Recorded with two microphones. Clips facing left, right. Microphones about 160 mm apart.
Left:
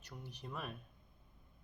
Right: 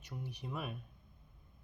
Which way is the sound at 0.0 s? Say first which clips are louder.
Right 5 dB; 10° right (ahead or behind).